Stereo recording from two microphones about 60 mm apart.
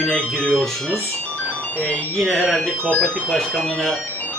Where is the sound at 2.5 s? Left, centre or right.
Centre.